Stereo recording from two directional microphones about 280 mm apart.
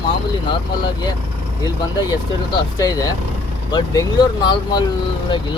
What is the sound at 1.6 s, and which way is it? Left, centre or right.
Speech, centre.